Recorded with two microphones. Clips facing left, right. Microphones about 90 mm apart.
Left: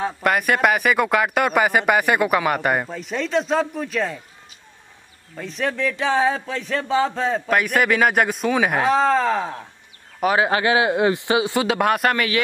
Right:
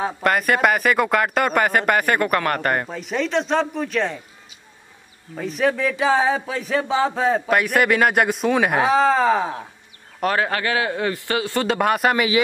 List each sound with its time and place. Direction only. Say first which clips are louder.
0.2 s speech: even; centre (ahead or behind)
5.3 s speech: right 4 dB; 5° right (ahead or behind)
10.2 s speech: left 3 dB; 10° left (ahead or behind)
11.6 s speech: even; centre (ahead or behind)